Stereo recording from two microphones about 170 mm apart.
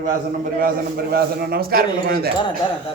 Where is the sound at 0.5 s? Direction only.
65° right (ahead or behind).